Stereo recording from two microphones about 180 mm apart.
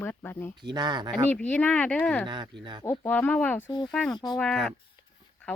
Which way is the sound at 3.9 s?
5° left (ahead or behind).